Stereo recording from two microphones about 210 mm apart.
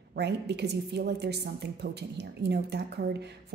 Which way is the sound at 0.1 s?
55° right (ahead or behind).